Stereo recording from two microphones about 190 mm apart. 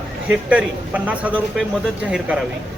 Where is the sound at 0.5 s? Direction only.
5° right (ahead or behind).